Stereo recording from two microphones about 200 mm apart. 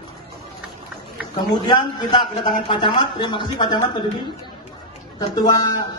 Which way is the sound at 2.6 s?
25° left (ahead or behind).